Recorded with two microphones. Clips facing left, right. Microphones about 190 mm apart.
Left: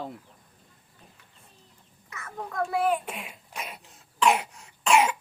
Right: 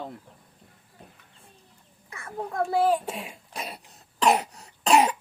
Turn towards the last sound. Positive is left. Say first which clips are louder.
# right 2 dB
turn(degrees=-35)  # may be behind; listen again after turning